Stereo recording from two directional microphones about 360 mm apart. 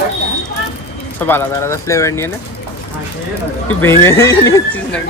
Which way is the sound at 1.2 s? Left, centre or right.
Centre.